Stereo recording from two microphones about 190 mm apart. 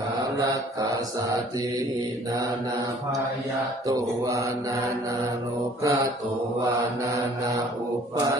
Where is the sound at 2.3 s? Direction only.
20° right (ahead or behind).